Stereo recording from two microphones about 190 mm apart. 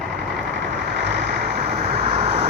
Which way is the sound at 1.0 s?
65° right (ahead or behind).